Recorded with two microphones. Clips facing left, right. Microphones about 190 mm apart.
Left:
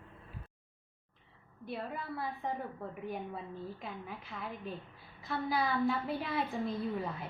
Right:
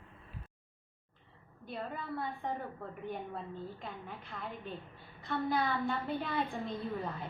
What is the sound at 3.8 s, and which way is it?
A woman's voice, 5° left (ahead or behind).